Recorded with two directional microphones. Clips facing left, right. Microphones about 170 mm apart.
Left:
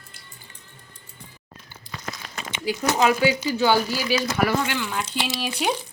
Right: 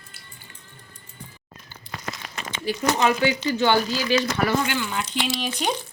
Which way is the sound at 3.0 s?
10° left (ahead or behind).